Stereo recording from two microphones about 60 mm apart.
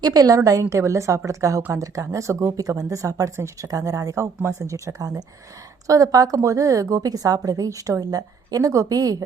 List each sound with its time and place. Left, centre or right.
0.0 s a woman's voice: right
0.7 s a woman's voice: right
3.3 s a woman's voice: right
3.7 s a woman's voice: right